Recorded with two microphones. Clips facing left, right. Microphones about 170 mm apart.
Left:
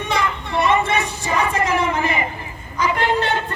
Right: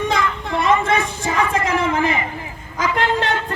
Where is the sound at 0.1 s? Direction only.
90° right.